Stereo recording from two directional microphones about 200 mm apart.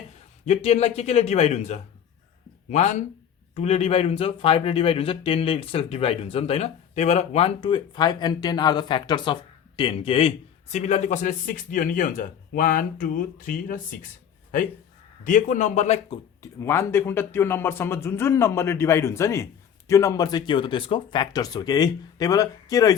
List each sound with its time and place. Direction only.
0.4 s a man's voice: 30° left (ahead or behind)
15.2 s a man's voice: 40° left (ahead or behind)
16.4 s speech: 15° left (ahead or behind)